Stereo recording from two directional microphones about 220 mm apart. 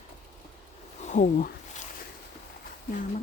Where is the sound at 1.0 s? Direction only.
35° left (ahead or behind).